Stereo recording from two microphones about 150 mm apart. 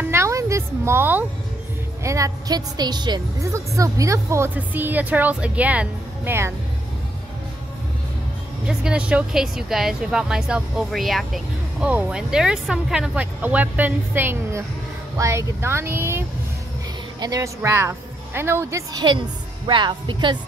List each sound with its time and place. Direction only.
0.0 s a sound: 15° right (ahead or behind)
2.0 s a woman's voice: 20° right (ahead or behind)
8.6 s a woman's voice: 5° right (ahead or behind); by 20.3 s 30° right (ahead or behind)